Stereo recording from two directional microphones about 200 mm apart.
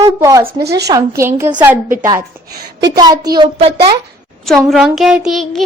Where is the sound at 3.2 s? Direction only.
20° right (ahead or behind).